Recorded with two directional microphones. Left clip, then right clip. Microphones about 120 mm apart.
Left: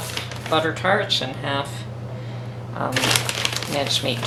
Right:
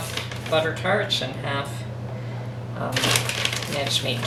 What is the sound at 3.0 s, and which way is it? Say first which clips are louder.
Sewing machine: left 1 dB; 15° left (ahead or behind).